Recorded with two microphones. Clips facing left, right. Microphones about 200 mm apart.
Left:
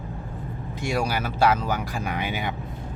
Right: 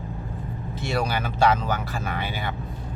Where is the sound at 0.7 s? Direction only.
10° left (ahead or behind).